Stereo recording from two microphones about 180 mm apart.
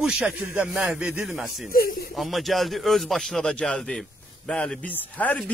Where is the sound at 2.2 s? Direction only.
Centre (ahead or behind).